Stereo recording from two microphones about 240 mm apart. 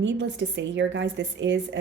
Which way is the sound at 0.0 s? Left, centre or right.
Right.